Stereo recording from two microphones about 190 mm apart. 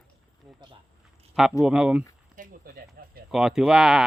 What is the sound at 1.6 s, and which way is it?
Speech, 5° right (ahead or behind).